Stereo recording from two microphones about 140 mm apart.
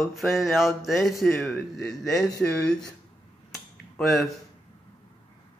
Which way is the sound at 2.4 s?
10° left (ahead or behind).